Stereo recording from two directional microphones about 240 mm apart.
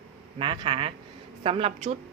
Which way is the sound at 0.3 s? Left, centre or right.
Right.